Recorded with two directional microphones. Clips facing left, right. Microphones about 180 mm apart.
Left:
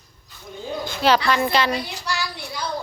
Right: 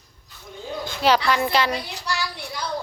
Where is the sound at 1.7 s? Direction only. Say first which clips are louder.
Left 2 dB; 5° left (ahead or behind).